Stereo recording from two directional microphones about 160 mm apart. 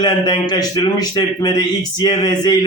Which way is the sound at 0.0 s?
25° left (ahead or behind).